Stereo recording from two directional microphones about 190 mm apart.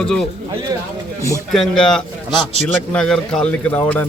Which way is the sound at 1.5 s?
5° left (ahead or behind).